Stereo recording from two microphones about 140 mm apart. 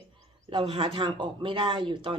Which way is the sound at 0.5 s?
45° right (ahead or behind).